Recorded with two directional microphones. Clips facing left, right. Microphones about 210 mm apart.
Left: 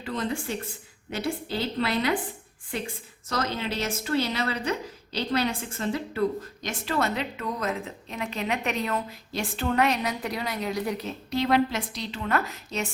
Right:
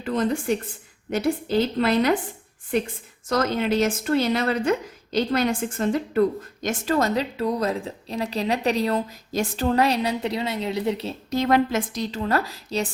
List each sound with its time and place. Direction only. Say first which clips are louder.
0.0 s a woman's voice: right 6 dB; 45° right (ahead or behind)
3.2 s a woman's voice: right 7 dB; 50° right (ahead or behind); by 11.1 s 25° right (ahead or behind)
11.3 s a woman's voice: right 3 dB; 45° right (ahead or behind)